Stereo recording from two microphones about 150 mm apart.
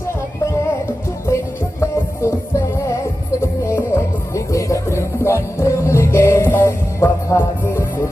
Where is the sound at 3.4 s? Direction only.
15° left (ahead or behind).